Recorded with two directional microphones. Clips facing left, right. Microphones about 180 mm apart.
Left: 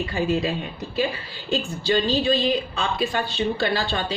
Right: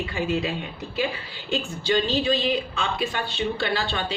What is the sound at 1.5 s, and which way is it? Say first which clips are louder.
Speech: left 1 dB; 35° left (ahead or behind).